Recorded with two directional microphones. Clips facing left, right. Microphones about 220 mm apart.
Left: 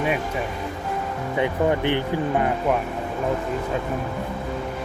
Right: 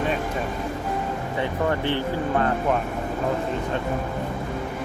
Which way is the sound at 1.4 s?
15° left (ahead or behind).